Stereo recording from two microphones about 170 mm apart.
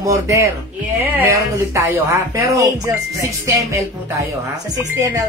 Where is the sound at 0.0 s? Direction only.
20° right (ahead or behind).